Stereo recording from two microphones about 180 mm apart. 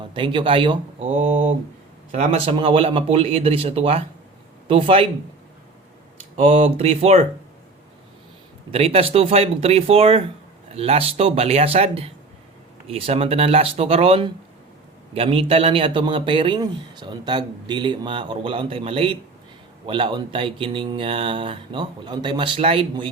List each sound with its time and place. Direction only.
0.1 s a man's voice: 30° right (ahead or behind)
1.0 s mantra: 40° right (ahead or behind)
2.1 s speech: 35° right (ahead or behind)
6.3 s speech: 40° right (ahead or behind)
8.7 s a man's voice: 35° right (ahead or behind)